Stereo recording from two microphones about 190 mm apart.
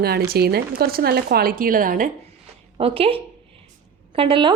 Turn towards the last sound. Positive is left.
turn(degrees=-25)  # may be behind; listen again after turning